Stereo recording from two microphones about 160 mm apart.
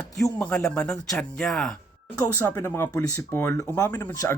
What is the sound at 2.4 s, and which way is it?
A man's voice, 15° left (ahead or behind).